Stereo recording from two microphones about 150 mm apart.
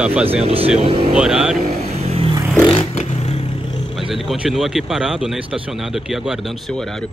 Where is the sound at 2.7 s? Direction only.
45° left (ahead or behind).